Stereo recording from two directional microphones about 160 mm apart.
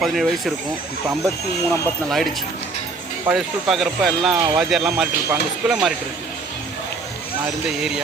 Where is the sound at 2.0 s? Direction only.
Centre (ahead or behind).